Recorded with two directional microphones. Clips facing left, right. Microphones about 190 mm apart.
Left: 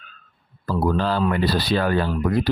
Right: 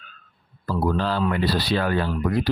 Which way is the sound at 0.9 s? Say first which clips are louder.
Left 2 dB; 40° left (ahead or behind).